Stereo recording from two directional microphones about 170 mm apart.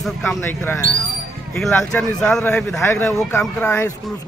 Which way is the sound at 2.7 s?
15° left (ahead or behind).